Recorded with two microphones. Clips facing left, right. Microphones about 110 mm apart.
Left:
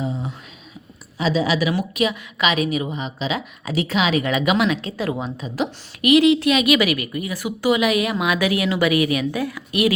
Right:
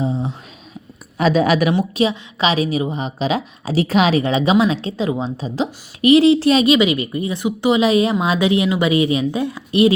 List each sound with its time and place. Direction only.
0.0 s a sound: 30° right (ahead or behind)
1.2 s speech: 55° right (ahead or behind)
1.7 s a woman's voice: 30° right (ahead or behind)